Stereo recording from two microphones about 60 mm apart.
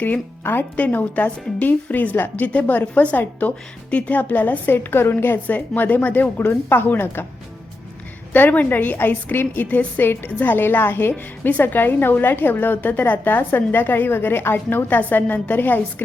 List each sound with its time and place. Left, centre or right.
0.8 s a woman's voice: left
8.3 s a woman's voice: left